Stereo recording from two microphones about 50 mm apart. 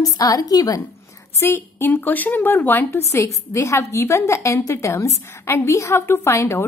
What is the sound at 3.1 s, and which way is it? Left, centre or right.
A woman's voice, left.